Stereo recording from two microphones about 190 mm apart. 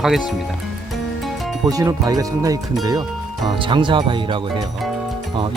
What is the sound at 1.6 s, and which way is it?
Speech, 20° right (ahead or behind).